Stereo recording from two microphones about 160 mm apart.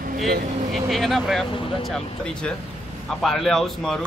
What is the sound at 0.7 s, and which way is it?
A man's voice, centre (ahead or behind).